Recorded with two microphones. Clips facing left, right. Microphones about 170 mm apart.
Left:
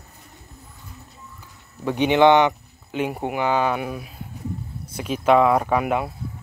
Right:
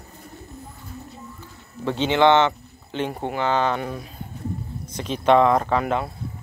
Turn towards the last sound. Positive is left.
turn(degrees=10)  # may be behind; listen again after turning